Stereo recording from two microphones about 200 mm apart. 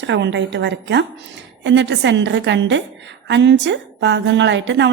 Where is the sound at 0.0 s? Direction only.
60° right (ahead or behind).